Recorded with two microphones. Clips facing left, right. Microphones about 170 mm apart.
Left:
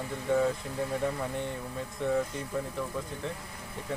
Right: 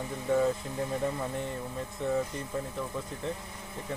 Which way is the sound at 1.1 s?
5° right (ahead or behind).